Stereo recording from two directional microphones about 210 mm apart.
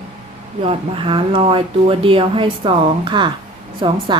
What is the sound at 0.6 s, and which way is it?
Speech, 25° right (ahead or behind).